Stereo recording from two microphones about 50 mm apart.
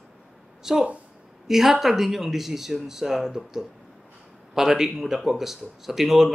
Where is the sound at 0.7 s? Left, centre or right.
Centre.